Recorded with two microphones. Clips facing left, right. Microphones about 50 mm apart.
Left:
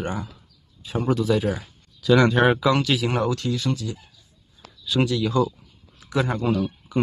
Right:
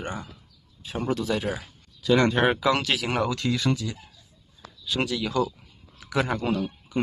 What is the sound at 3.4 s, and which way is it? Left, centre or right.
Speech, right.